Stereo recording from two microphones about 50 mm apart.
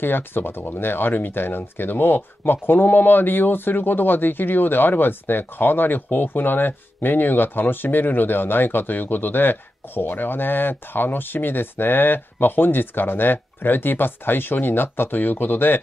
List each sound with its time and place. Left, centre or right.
0.0 s speech: left